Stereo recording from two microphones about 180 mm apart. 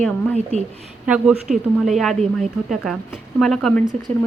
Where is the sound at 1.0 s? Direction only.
5° right (ahead or behind).